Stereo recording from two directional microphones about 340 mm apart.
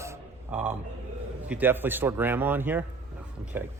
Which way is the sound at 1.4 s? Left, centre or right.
Centre.